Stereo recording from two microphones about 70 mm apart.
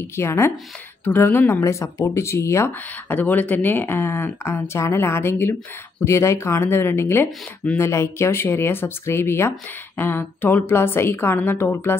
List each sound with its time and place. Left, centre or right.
0.0 s a woman's voice: left
1.5 s speech: left
3.1 s a woman's voice: left